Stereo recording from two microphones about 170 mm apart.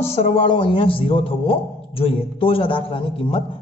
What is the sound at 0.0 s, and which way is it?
A man's voice, 35° left (ahead or behind).